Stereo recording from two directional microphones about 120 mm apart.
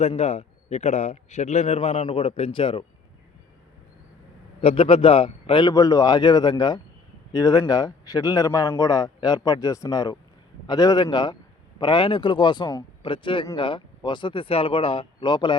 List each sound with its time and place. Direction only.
0.0 s a man's voice: 65° left (ahead or behind)
2.0 s speech: 50° left (ahead or behind)
4.6 s speech: 55° left (ahead or behind)
5.7 s a man's voice: 30° left (ahead or behind)